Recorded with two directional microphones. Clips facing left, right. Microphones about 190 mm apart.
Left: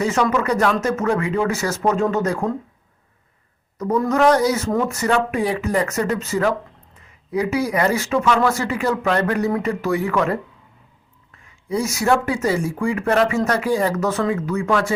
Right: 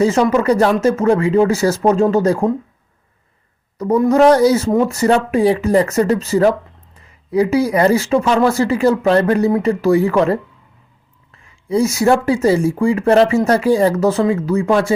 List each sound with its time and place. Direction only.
0.0 s speech: 30° right (ahead or behind)
4.1 s speech: 30° right (ahead or behind)